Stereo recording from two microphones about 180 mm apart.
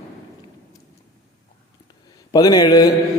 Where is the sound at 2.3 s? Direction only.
20° left (ahead or behind).